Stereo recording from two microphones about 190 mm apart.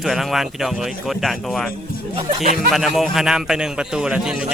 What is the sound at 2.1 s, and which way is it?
Speech, 40° right (ahead or behind).